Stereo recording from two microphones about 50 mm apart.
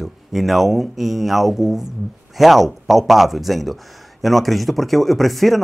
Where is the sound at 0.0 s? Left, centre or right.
Centre.